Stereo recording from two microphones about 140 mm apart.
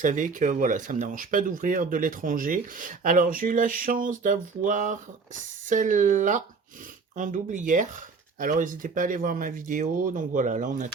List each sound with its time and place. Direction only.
0.0 s speech: 65° right (ahead or behind)